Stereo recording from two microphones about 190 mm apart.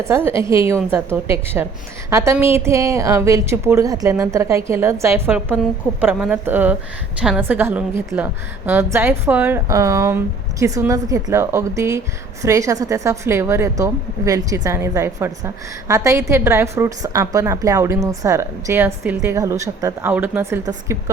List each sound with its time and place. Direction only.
0.0 s a woman's voice: 15° right (ahead or behind)